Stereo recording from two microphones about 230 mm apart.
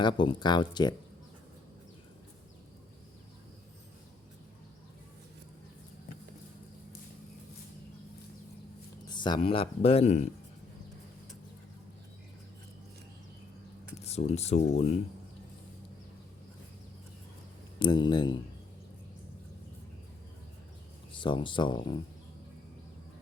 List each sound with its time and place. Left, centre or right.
0.0 s speech: left
9.0 s speech: centre
14.0 s speech: left
17.7 s speech: centre
21.2 s speech: left